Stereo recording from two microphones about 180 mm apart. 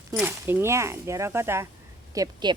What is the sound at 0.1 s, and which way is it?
Speech, 10° right (ahead or behind).